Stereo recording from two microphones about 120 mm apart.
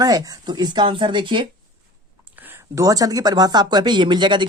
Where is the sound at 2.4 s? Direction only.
15° right (ahead or behind).